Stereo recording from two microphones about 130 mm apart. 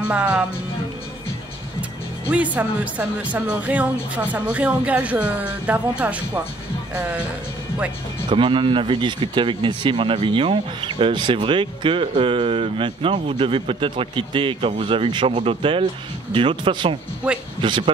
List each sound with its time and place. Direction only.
0.1 s speech: 10° right (ahead or behind)
2.3 s speech: 10° right (ahead or behind)
8.3 s speech: 40° right (ahead or behind)